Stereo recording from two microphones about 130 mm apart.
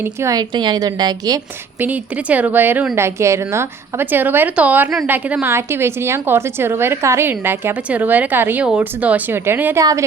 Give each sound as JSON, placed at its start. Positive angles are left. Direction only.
{"t": 0.0, "sound": "a woman's voice", "side_deg": -20}
{"t": 0.5, "sound": "a woman's voice", "side_deg": -35}
{"t": 1.8, "sound": "a woman's voice", "side_deg": -10}